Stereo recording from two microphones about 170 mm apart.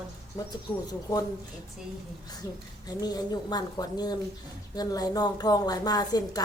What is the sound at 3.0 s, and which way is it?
A woman's voice, 25° left (ahead or behind).